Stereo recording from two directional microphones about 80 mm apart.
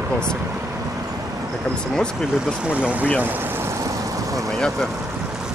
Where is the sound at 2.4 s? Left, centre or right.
Centre.